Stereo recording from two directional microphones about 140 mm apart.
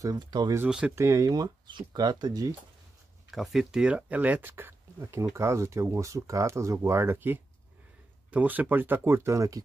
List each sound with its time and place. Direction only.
0.0 s speech: 30° right (ahead or behind)
0.7 s speech: 5° right (ahead or behind)
0.9 s speech: 20° right (ahead or behind)
3.3 s speech: centre (ahead or behind); by 9.6 s 20° right (ahead or behind)